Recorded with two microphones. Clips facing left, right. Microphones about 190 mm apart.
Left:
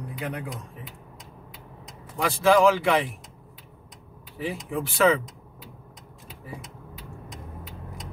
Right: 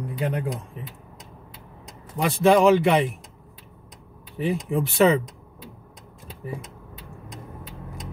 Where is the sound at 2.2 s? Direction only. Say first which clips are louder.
Right 2 dB; 25° right (ahead or behind).